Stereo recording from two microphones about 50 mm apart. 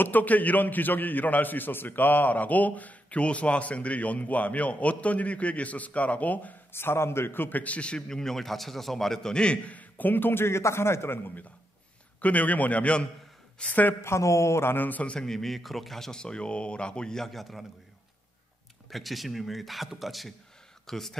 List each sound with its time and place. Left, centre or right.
0.0 s a man's voice: left
6.7 s a man's voice: left
7.6 s speech: left
9.8 s a man's voice: left
12.2 s a man's voice: left
14.0 s a man's voice: left
14.6 s a man's voice: left
14.9 s a man's voice: left
15.1 s speech: centre
18.9 s speech: centre